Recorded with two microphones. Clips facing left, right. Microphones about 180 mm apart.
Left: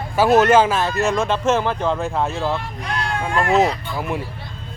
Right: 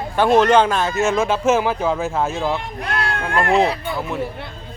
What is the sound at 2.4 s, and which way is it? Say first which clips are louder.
Speech: right 1 dB; 15° right (ahead or behind).